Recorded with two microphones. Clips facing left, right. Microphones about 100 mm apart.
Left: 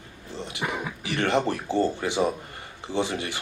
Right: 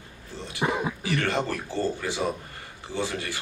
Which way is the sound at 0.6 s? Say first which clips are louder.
Right 5 dB; 20° right (ahead or behind).